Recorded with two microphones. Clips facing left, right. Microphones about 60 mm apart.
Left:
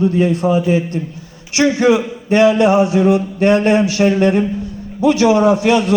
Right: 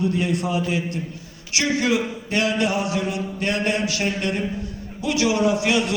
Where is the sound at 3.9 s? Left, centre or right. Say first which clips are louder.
Left 11 dB; left.